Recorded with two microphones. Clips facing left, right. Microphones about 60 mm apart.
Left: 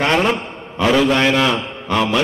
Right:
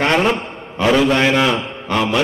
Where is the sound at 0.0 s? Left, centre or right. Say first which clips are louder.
Right 1 dB; centre.